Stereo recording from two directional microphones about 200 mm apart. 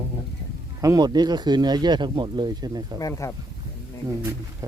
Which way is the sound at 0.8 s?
20° right (ahead or behind).